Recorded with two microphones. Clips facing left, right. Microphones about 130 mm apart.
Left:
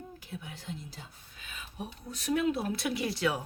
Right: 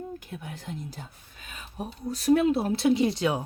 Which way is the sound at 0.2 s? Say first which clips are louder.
Right 4 dB; 50° right (ahead or behind).